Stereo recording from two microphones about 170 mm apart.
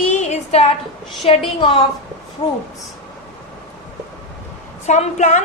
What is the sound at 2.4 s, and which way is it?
Speech, 35° left (ahead or behind).